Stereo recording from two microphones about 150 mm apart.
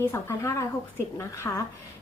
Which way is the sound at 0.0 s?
20° left (ahead or behind).